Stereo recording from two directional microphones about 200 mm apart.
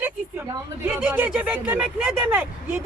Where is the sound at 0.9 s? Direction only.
10° right (ahead or behind).